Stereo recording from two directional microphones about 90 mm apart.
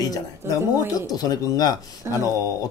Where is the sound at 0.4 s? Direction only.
30° right (ahead or behind).